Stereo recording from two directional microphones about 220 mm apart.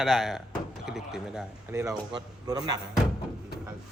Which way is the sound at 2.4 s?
15° right (ahead or behind).